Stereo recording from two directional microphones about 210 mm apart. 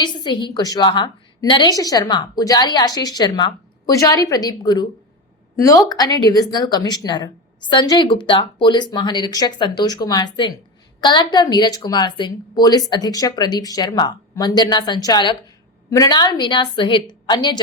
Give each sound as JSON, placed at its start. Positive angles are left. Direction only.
{"t": 0.0, "sound": "a woman's voice", "side_deg": 20}